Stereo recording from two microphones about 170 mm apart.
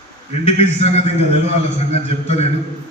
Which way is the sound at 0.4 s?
40° left (ahead or behind).